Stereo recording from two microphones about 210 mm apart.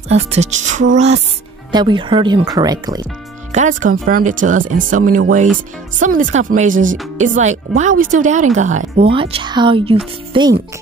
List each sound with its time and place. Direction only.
0.1 s speech: 30° right (ahead or behind)
3.5 s speech: 35° right (ahead or behind)
9.1 s speech: 25° right (ahead or behind)